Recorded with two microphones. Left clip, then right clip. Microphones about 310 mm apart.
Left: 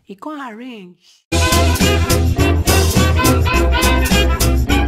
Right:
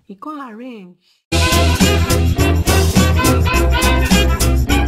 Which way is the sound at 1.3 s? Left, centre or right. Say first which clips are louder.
Even; centre.